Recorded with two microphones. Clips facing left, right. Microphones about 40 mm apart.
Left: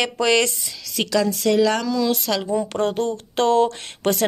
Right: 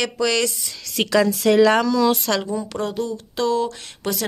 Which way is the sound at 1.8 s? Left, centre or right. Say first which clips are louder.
Right 3 dB; centre.